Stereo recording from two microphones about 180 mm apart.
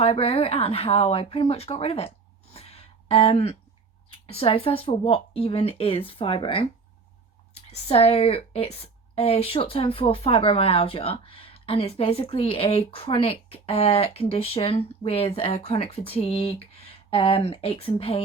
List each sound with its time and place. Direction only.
0.0 s a woman's voice: 30° left (ahead or behind)